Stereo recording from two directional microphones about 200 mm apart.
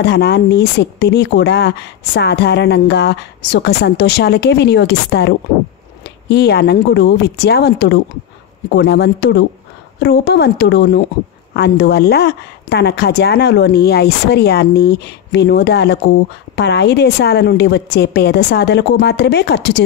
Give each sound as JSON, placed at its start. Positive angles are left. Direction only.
{"t": 0.0, "sound": "a woman's voice", "side_deg": 55}